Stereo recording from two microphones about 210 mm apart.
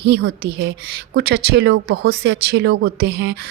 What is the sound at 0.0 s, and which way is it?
Speech, 50° right (ahead or behind).